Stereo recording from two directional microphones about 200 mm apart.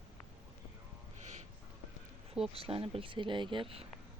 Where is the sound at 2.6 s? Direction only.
30° right (ahead or behind).